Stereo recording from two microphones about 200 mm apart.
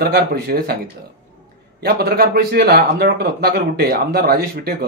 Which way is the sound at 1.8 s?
50° right (ahead or behind).